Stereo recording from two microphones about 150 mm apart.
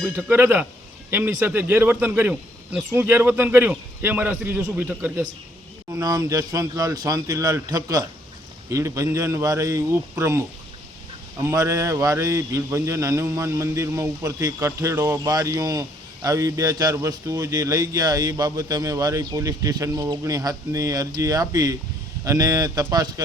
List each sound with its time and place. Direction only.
0.0 s a man's voice: 10° right (ahead or behind)
5.9 s a man's voice: 20° right (ahead or behind)
11.4 s a man's voice: 20° right (ahead or behind)